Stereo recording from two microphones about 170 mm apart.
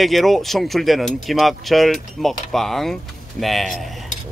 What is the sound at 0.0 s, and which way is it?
Speech, centre (ahead or behind).